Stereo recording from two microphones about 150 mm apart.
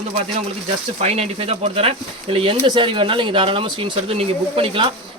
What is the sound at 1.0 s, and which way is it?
A man's voice, 45° right (ahead or behind).